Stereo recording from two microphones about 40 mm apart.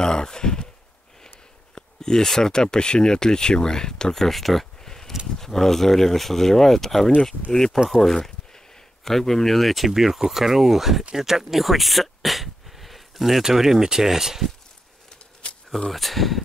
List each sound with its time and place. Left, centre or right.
0.0 s sigh: centre
1.8 s speech: centre
4.8 s a sound: centre
5.4 s speech: centre
15.9 s speech: centre